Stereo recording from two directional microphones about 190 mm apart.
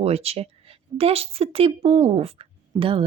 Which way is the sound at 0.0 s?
30° right (ahead or behind).